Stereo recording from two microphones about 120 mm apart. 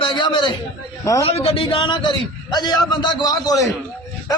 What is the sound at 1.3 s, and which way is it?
A man's voice, 55° left (ahead or behind).